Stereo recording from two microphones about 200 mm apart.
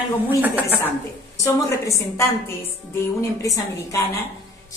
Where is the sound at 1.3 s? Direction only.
15° left (ahead or behind).